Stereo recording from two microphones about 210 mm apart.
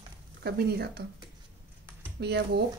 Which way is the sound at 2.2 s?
50° right (ahead or behind).